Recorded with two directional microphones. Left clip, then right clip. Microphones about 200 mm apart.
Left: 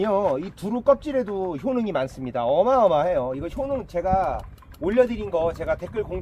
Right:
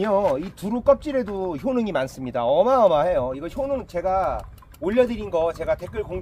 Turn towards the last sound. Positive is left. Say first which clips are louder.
# right 1 dB
turn(degrees=-15)  # may be behind; listen again after turning